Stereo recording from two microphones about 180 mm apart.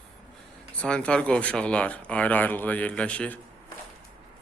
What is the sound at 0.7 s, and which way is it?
Speech, 5° left (ahead or behind).